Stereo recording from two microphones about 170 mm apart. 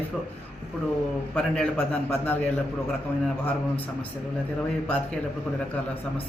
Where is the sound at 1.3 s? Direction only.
5° left (ahead or behind).